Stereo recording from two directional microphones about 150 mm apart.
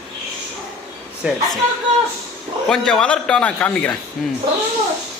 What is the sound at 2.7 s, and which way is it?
A man's voice, 5° left (ahead or behind).